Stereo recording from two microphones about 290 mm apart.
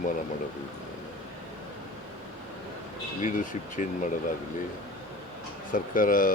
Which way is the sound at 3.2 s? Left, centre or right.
Left.